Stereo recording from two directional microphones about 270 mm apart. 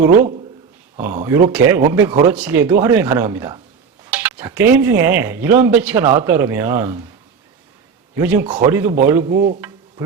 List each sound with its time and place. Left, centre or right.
0.1 s a man's voice: right
0.9 s speech: centre
8.2 s a man's voice: centre